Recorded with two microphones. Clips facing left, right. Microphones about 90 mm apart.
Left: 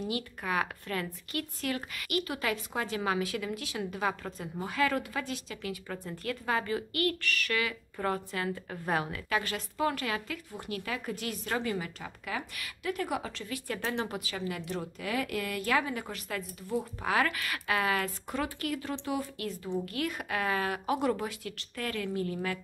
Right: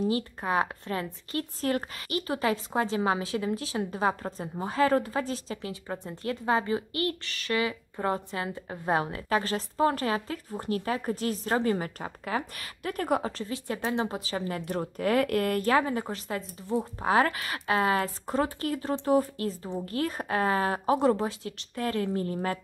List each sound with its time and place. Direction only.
0.4 s a woman's voice: 25° right (ahead or behind)